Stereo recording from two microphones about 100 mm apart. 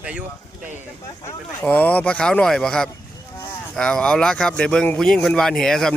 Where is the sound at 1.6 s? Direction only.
15° left (ahead or behind).